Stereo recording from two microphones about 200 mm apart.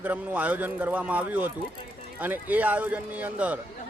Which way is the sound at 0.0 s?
10° right (ahead or behind).